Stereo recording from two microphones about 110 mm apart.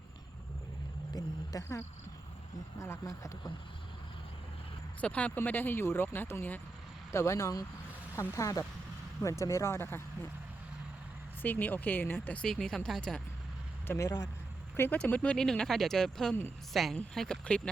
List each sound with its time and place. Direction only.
1.1 s a sound: 30° left (ahead or behind)
2.7 s speech: 25° left (ahead or behind)
4.9 s speech: 15° left (ahead or behind)
11.4 s speech: 15° left (ahead or behind)
13.8 s speech: 20° left (ahead or behind)